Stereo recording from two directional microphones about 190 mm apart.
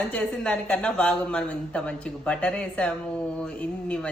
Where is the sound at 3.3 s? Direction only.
5° left (ahead or behind).